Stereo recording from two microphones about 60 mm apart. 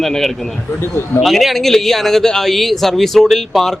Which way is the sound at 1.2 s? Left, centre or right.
Centre.